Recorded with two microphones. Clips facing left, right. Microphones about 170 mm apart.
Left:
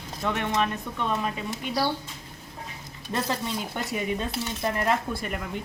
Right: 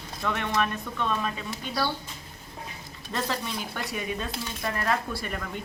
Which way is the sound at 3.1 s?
20° left (ahead or behind).